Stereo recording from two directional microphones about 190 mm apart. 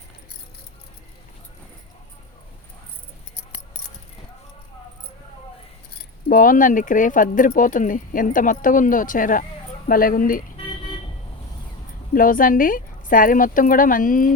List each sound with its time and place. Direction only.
6.2 s speech: 45° left (ahead or behind)
12.1 s speech: 45° left (ahead or behind)